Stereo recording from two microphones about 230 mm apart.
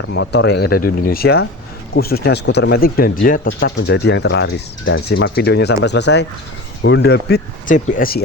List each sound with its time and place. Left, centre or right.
0.1 s speech: left
5.0 s speech: left